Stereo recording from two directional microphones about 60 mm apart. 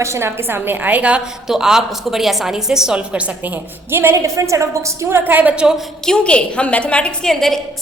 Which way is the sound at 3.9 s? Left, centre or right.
Right.